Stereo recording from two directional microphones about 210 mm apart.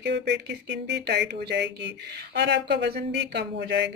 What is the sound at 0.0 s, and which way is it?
Speech, 55° right (ahead or behind).